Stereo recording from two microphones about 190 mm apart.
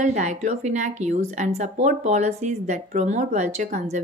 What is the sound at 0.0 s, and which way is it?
A woman's voice, 40° right (ahead or behind).